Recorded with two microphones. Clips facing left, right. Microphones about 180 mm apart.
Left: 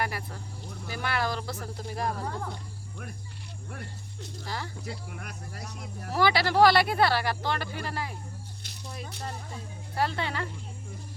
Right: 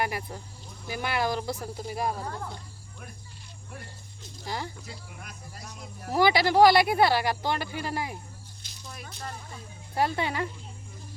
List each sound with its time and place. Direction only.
0.0 s speech: 15° right (ahead or behind)
3.7 s speech: 65° left (ahead or behind)
4.4 s speech: 15° right (ahead or behind)
4.9 s speech: 65° left (ahead or behind)
6.1 s speech: 15° right (ahead or behind)
8.6 s a sound: 65° left (ahead or behind)
9.9 s speech: 15° right (ahead or behind)